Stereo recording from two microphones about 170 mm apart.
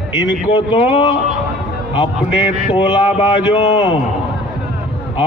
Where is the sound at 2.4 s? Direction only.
25° left (ahead or behind).